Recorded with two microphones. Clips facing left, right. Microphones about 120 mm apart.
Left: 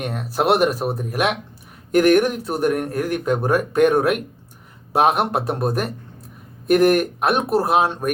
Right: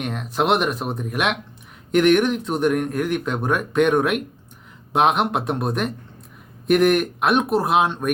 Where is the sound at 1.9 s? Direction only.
40° left (ahead or behind).